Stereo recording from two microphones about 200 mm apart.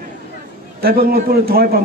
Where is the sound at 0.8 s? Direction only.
50° right (ahead or behind).